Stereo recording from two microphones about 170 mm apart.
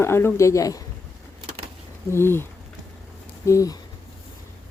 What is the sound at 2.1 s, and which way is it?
Speech, 15° left (ahead or behind).